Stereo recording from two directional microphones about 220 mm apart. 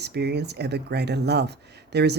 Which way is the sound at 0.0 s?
50° right (ahead or behind).